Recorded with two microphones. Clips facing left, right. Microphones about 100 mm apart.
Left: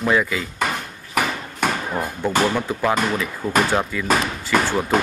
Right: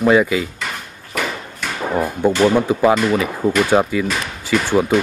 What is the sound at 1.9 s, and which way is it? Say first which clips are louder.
Speech: right 5 dB; 20° right (ahead or behind).